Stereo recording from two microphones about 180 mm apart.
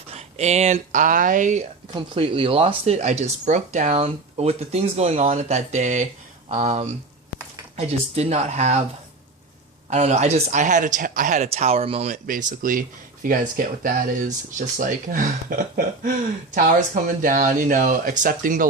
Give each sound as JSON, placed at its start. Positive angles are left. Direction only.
{"t": 0.1, "sound": "speech", "side_deg": -35}
{"t": 2.0, "sound": "speech", "side_deg": -30}
{"t": 9.9, "sound": "speech", "side_deg": -40}